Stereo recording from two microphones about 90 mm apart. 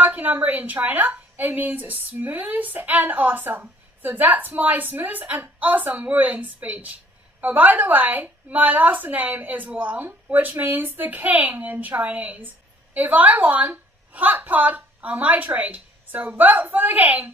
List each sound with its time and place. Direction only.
0.0 s a woman's voice: 20° right (ahead or behind)